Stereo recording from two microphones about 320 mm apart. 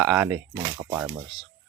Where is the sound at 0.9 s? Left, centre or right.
Centre.